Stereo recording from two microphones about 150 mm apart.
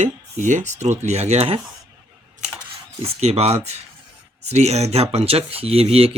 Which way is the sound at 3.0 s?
45° right (ahead or behind).